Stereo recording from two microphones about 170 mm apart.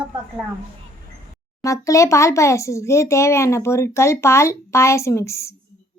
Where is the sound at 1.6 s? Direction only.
20° left (ahead or behind).